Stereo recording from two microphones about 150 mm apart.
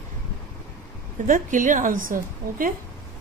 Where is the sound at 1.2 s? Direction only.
60° right (ahead or behind).